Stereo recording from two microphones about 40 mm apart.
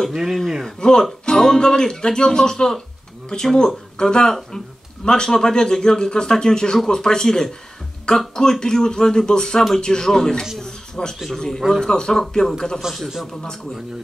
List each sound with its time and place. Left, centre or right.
0.1 s speech: centre
0.7 s speech: centre
10.6 s a sound: centre
11.3 s speech: centre